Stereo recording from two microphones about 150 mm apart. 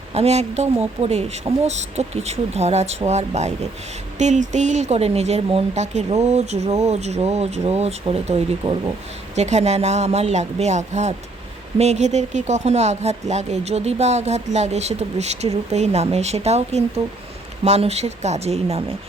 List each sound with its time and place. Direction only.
0.1 s speech: 45° right (ahead or behind)
9.3 s speech: 50° right (ahead or behind)